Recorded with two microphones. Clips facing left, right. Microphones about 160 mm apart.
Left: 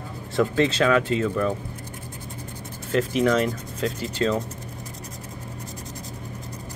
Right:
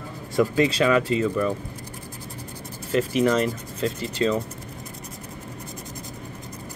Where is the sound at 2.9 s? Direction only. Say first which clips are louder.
Even; centre (ahead or behind).